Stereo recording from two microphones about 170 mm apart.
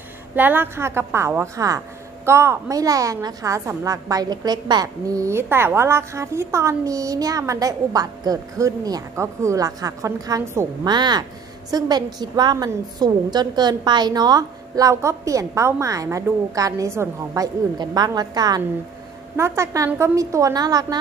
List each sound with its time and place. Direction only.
0.4 s a woman's voice: 10° right (ahead or behind)